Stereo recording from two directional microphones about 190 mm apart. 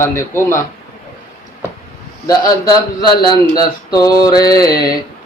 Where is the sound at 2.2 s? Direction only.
20° left (ahead or behind).